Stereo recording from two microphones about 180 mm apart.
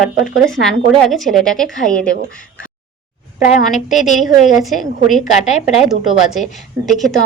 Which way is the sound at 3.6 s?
40° left (ahead or behind).